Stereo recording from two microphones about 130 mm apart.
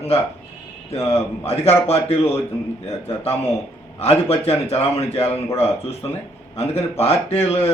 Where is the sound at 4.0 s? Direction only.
50° left (ahead or behind).